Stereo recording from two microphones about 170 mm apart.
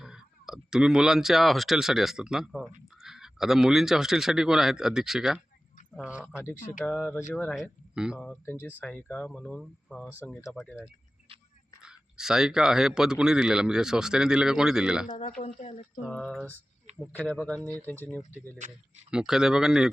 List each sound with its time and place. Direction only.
0.0 s speech: 5° right (ahead or behind)
6.2 s speech: 10° left (ahead or behind); by 8.3 s 5° right (ahead or behind)
8.3 s speech: 15° left (ahead or behind)
11.8 s speech: 5° right (ahead or behind)
15.0 s speech: 35° left (ahead or behind)
16.0 s speech: 5° left (ahead or behind)
19.1 s speech: 5° right (ahead or behind)